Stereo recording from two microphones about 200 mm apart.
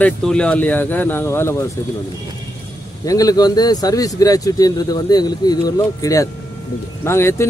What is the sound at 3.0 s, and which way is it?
Speech, 15° left (ahead or behind).